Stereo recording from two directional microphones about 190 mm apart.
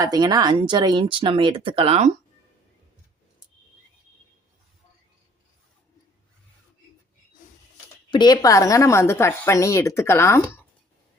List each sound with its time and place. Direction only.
0.0 s speech: 20° right (ahead or behind)
8.1 s a woman's voice: 20° left (ahead or behind)